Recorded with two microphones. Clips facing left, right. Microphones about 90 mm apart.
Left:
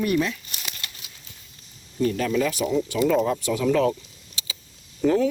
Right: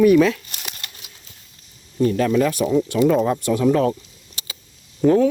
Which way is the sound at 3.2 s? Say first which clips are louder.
Right 4 dB; 55° right (ahead or behind).